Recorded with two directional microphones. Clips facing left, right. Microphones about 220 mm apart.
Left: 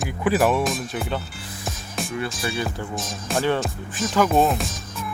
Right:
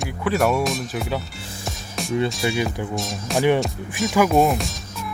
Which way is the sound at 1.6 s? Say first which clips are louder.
Even; centre (ahead or behind).